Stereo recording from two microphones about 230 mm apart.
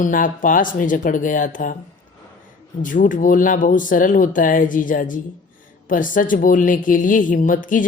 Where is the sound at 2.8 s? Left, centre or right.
Left.